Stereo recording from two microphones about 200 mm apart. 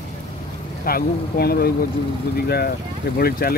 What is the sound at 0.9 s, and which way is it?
Speech, 50° left (ahead or behind).